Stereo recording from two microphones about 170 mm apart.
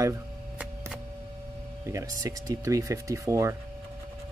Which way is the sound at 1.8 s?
20° right (ahead or behind).